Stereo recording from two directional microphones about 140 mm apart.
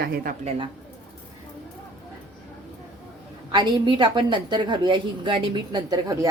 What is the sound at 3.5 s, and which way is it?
A woman's voice, 35° right (ahead or behind).